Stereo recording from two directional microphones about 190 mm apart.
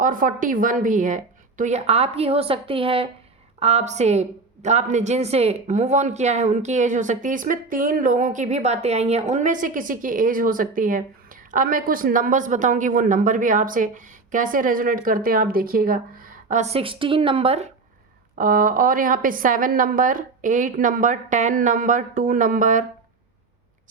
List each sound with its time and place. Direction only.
0.0 s a woman's voice: 45° right (ahead or behind)
16.5 s a woman's voice: 35° right (ahead or behind)
18.3 s a woman's voice: 45° right (ahead or behind)